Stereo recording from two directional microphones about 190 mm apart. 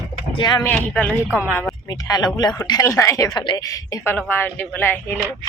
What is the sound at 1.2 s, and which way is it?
Speech, 10° right (ahead or behind).